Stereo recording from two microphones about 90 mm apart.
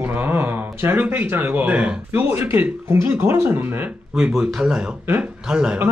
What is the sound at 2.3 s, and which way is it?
Speech, 25° right (ahead or behind).